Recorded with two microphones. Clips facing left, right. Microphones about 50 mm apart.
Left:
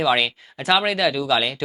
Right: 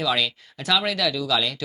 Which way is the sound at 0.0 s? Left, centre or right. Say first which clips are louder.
Left 4 dB; left.